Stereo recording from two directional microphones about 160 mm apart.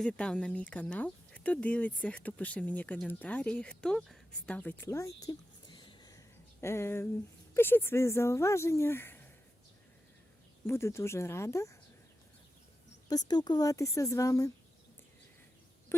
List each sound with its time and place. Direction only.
0.0 s speech: 5° left (ahead or behind)
10.7 s speech: 15° left (ahead or behind)
13.1 s a woman's voice: 25° left (ahead or behind)
15.9 s a sound: 15° left (ahead or behind)